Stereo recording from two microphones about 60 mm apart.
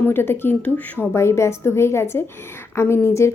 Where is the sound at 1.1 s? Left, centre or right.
Left.